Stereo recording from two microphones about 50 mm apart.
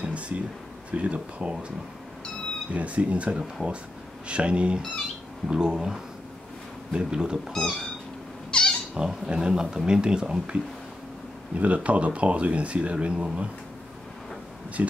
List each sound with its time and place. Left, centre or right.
0.0 s a sound: right
0.9 s speech: right
2.7 s speech: right
7.5 s speech: centre
8.5 s cat: centre
8.9 s speech: centre
14.8 s speech: right